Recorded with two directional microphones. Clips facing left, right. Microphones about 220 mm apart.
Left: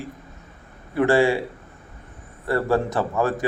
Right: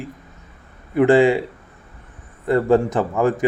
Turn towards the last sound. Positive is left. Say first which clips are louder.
# right 4 dB
turn(degrees=-15)  # may be behind; listen again after turning